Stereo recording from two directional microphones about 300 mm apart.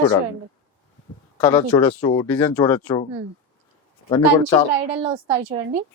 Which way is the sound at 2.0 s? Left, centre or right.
Centre.